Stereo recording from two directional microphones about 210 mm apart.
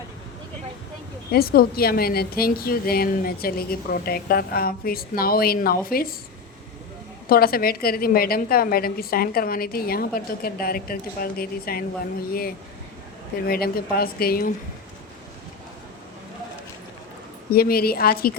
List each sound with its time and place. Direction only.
1.3 s a woman's voice: 45° left (ahead or behind)
7.3 s a woman's voice: 45° left (ahead or behind)
17.5 s a woman's voice: 45° left (ahead or behind)